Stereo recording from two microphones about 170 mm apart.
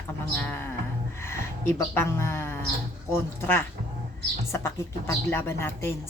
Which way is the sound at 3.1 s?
15° left (ahead or behind).